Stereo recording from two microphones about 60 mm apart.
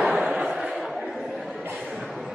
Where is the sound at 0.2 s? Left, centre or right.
Right.